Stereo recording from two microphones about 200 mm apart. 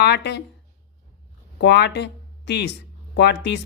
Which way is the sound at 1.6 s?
60° left (ahead or behind).